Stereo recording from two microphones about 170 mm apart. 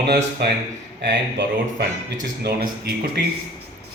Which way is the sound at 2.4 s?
70° right (ahead or behind).